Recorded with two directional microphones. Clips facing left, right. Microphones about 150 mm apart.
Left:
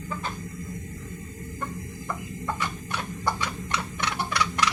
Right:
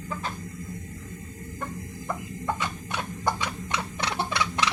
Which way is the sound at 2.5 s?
20° right (ahead or behind).